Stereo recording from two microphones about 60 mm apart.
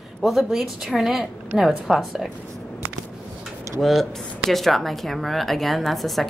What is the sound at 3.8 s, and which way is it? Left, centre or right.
A woman's voice, centre.